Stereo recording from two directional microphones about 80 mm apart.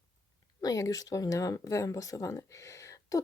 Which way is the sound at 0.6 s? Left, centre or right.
Left.